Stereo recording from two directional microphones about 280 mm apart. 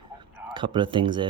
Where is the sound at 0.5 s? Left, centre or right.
Centre.